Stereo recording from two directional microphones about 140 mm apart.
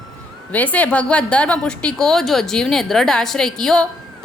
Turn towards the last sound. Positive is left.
turn(degrees=5)  # may be behind; listen again after turning